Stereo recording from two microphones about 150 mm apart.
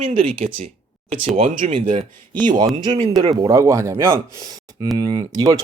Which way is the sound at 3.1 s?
30° right (ahead or behind).